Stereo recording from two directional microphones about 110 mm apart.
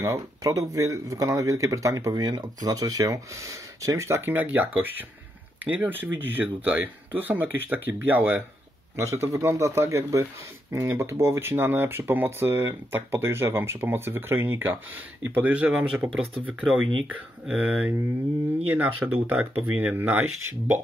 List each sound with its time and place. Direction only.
0.0 s speech: 30° right (ahead or behind)